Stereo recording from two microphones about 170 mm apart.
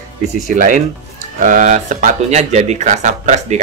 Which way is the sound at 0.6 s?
50° right (ahead or behind).